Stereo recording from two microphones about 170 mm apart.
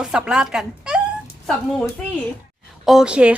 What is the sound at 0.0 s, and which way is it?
A woman's voice, 5° right (ahead or behind).